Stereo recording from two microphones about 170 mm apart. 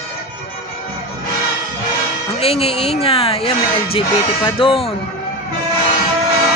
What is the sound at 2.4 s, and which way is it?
Speech, 35° left (ahead or behind).